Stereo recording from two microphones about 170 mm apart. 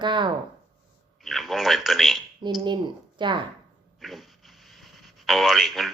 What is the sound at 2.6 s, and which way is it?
Speech, 25° right (ahead or behind).